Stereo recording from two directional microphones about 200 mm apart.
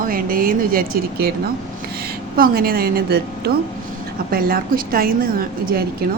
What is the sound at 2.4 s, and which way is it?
Speech, 50° right (ahead or behind).